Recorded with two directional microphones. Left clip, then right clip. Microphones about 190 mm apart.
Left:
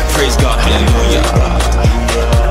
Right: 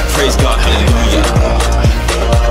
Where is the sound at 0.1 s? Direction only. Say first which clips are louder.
Right 1 dB; centre (ahead or behind).